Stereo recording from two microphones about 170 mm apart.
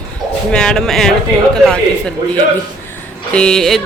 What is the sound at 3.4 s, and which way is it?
Speech, 5° left (ahead or behind).